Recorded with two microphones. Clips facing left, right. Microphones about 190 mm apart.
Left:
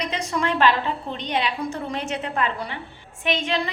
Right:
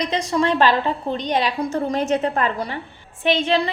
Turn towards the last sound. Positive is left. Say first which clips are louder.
# right 5 dB
turn(degrees=-35)  # may be behind; listen again after turning